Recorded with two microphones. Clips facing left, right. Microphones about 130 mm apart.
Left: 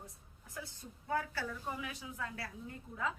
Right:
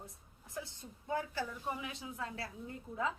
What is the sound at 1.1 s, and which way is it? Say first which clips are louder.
A woman's voice: even; 20° right (ahead or behind).